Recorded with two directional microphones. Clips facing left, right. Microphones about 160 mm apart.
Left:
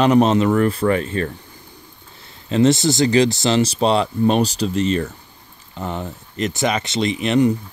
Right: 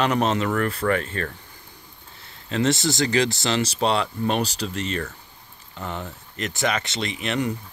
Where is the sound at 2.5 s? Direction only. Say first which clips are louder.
Left 7 dB; 20° left (ahead or behind).